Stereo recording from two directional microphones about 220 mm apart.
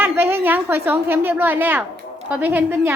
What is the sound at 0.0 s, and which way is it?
A woman's voice, 10° right (ahead or behind).